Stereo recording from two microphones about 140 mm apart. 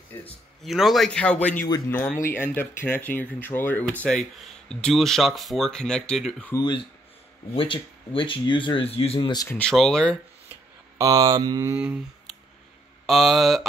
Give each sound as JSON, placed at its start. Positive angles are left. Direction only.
{"t": 0.7, "sound": "speech", "side_deg": 0}
{"t": 6.5, "sound": "speech", "side_deg": 30}
{"t": 9.5, "sound": "speech", "side_deg": 5}
{"t": 11.0, "sound": "mantra", "side_deg": -25}
{"t": 11.7, "sound": "speech", "side_deg": -10}
{"t": 13.0, "sound": "speech", "side_deg": 0}